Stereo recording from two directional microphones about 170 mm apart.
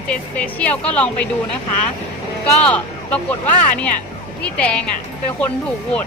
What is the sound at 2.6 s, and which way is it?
Speech, 10° left (ahead or behind).